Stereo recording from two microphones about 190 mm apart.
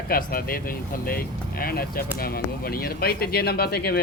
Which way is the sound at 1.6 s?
50° left (ahead or behind).